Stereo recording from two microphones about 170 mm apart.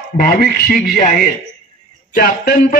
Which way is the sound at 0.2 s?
60° left (ahead or behind).